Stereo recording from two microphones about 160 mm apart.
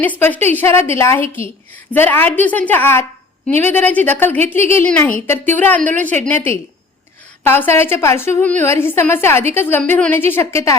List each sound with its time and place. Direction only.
0.0 s a woman's voice: 10° left (ahead or behind)